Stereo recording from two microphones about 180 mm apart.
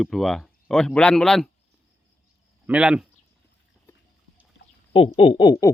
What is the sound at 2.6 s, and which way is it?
Speech, 5° right (ahead or behind).